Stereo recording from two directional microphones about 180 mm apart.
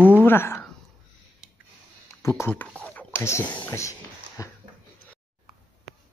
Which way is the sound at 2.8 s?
10° left (ahead or behind).